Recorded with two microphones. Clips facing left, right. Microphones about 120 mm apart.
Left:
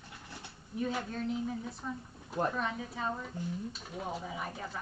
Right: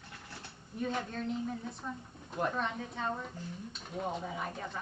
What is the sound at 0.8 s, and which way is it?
Speech, 5° left (ahead or behind).